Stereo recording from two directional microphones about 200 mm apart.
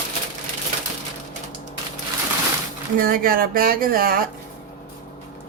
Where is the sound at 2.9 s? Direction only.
45° right (ahead or behind).